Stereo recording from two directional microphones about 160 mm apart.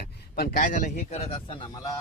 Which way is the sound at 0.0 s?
65° left (ahead or behind).